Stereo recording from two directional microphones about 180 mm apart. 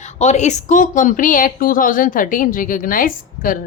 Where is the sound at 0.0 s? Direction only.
40° left (ahead or behind).